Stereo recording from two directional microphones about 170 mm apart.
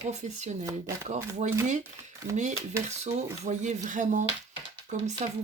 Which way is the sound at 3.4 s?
45° right (ahead or behind).